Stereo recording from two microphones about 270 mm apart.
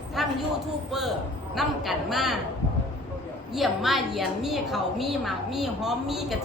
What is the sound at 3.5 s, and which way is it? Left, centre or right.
A woman's voice, centre.